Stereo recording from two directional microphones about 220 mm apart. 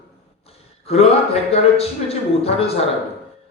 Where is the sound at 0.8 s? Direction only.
25° left (ahead or behind).